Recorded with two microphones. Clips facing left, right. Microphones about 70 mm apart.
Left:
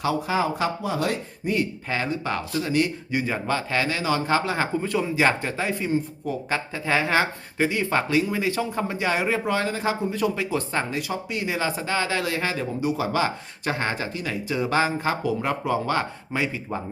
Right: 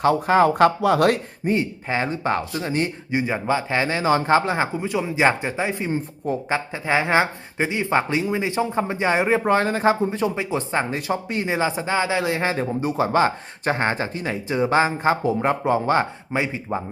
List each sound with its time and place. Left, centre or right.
0.0 s speech: right
1.5 s speech: right
9.4 s speech: right
10.9 s speech: right